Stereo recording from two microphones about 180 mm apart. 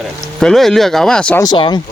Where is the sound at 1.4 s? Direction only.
25° left (ahead or behind).